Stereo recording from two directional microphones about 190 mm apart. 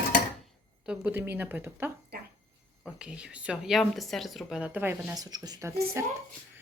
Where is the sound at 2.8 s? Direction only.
5° right (ahead or behind).